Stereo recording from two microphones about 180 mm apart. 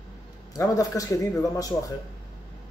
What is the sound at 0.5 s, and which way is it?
Speech, 20° left (ahead or behind).